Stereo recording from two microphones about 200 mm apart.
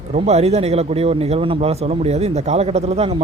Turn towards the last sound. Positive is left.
turn(degrees=-30)  # may be behind; listen again after turning